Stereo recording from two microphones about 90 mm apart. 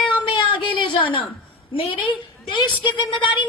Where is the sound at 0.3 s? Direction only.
65° left (ahead or behind).